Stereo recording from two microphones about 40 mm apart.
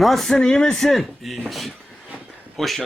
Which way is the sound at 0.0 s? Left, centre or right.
Centre.